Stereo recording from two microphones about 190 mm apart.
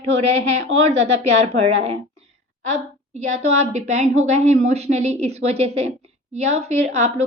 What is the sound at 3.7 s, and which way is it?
A woman's voice, 35° right (ahead or behind).